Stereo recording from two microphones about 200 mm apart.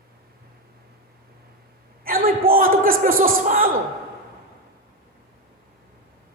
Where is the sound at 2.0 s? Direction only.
45° right (ahead or behind).